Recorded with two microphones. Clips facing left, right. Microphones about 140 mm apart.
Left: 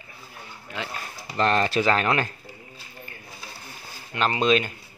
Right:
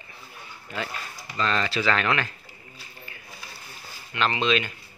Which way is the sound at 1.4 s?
50° left (ahead or behind).